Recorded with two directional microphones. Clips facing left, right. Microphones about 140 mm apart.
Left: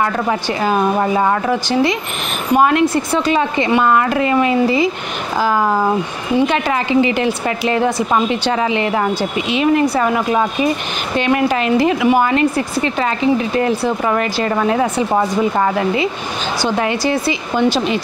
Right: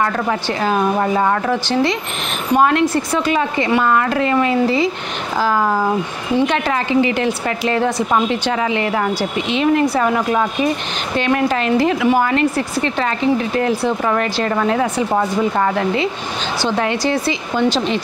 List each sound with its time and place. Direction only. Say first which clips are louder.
0.0 s speech: left 1 dB; 10° left (ahead or behind)
3.1 s speech: left 2 dB; 30° left (ahead or behind)
3.5 s speech: left 2 dB; 20° left (ahead or behind)
7.0 s a woman's voice: left 2 dB; 20° left (ahead or behind)
9.5 s speech: left 1 dB; 5° left (ahead or behind)
10.3 s speech: left 1 dB; 15° left (ahead or behind)